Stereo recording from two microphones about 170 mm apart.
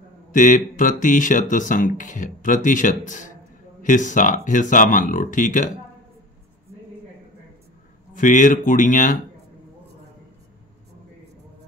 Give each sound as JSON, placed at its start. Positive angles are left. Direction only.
{"t": 0.3, "sound": "speech", "side_deg": 50}
{"t": 8.1, "sound": "speech", "side_deg": 50}